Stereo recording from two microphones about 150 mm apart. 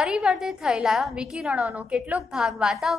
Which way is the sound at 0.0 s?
5° right (ahead or behind).